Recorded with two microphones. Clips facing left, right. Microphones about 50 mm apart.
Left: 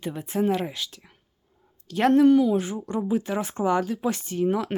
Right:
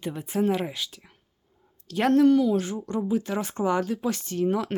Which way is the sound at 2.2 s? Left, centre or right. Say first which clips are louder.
Left 2 dB; centre.